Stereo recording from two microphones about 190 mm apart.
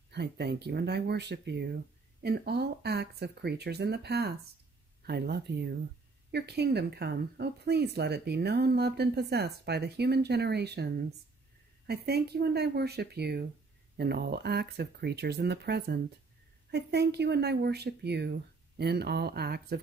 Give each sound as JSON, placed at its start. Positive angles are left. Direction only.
{"t": 0.1, "sound": "speech", "side_deg": -60}